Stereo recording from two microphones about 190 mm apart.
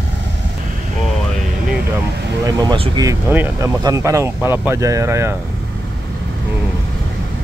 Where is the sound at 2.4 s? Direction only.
20° right (ahead or behind).